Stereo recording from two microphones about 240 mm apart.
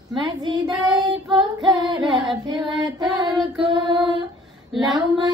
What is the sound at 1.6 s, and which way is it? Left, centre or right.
Singing, centre.